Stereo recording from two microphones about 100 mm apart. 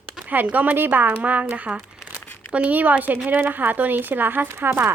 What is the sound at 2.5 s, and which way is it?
Speech, 15° right (ahead or behind).